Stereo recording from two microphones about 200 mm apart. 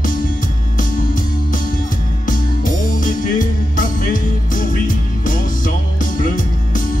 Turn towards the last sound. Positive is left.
turn(degrees=40)  # may be behind; listen again after turning